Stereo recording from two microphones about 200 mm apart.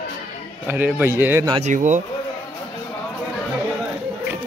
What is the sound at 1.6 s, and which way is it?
Speech, 35° right (ahead or behind).